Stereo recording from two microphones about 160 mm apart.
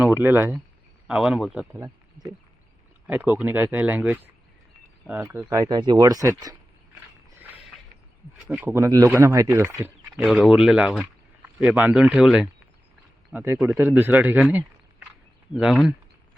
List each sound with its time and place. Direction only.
0.0 s speech: 10° right (ahead or behind)
1.7 s speech: 20° right (ahead or behind)
3.1 s speech: 10° right (ahead or behind)
7.3 s a sound: 10° right (ahead or behind)
8.4 s speech: 10° right (ahead or behind)
10.2 s speech: centre (ahead or behind)